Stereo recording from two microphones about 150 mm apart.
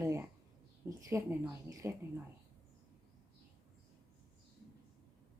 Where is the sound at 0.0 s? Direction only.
20° right (ahead or behind).